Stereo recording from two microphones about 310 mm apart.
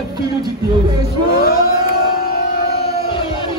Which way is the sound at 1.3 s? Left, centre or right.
Left.